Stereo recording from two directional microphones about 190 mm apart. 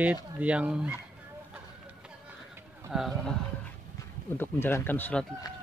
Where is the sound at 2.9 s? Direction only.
Centre (ahead or behind).